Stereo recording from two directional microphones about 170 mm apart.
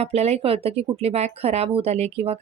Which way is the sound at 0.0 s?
40° right (ahead or behind).